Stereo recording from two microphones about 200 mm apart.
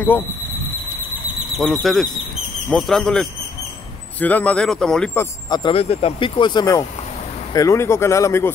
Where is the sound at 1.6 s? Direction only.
Centre (ahead or behind).